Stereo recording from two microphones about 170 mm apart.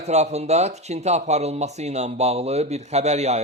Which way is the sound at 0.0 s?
40° right (ahead or behind).